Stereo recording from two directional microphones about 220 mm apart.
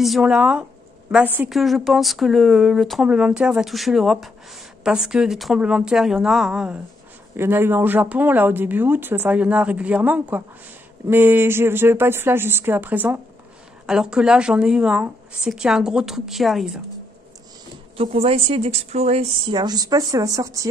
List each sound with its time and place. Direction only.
0.0 s a woman's voice: centre (ahead or behind)
17.9 s speech: 25° right (ahead or behind)